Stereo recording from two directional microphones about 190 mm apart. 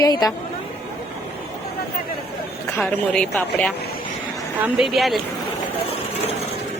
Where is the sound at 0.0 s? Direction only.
20° left (ahead or behind).